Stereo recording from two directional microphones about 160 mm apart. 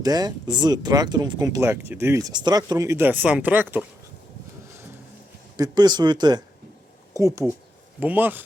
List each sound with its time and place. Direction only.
0.0 s speech: 25° right (ahead or behind)
5.5 s speech: 25° right (ahead or behind)